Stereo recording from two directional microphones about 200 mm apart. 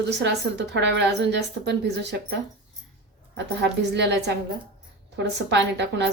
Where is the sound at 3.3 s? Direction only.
60° right (ahead or behind).